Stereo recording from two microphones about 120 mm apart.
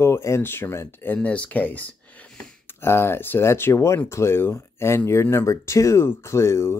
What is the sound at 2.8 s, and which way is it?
Speech, 20° left (ahead or behind).